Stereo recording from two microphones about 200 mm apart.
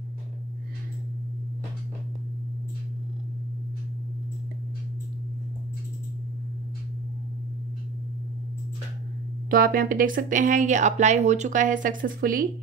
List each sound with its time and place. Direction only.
9.5 s a woman's voice: 45° right (ahead or behind)